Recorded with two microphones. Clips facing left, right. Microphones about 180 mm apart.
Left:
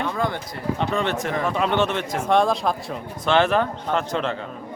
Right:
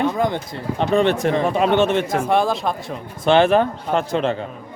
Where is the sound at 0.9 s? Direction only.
30° right (ahead or behind).